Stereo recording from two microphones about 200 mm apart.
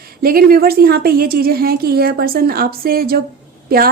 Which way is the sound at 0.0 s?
45° right (ahead or behind).